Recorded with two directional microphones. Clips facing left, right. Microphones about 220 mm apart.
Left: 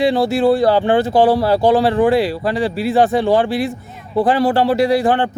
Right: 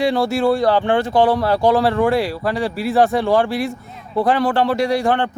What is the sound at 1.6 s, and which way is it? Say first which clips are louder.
Speech: left 2 dB; centre (ahead or behind).